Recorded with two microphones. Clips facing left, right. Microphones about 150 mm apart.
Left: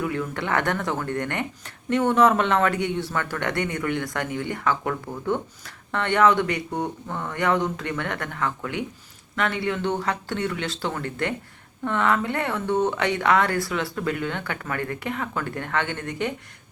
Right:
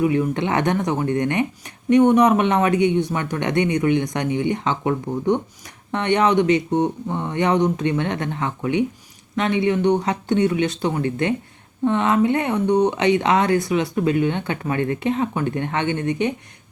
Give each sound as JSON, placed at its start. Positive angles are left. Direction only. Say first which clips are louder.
{"t": 0.0, "sound": "speech", "louder": "right 8 dB", "side_deg": -20}